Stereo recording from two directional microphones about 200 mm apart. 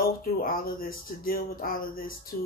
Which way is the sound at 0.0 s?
45° left (ahead or behind).